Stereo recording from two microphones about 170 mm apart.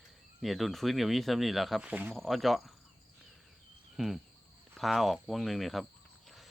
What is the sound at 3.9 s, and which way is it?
Speech, centre (ahead or behind).